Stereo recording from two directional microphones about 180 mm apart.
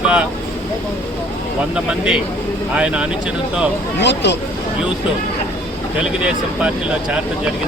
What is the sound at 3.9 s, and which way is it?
Speech, 70° left (ahead or behind).